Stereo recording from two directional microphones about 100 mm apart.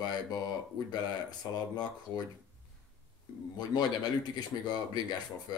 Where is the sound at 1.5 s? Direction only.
45° left (ahead or behind).